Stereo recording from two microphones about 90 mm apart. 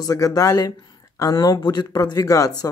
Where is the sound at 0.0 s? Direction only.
45° left (ahead or behind).